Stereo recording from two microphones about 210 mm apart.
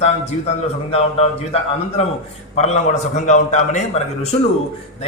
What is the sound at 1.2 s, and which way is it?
Speech, 30° left (ahead or behind).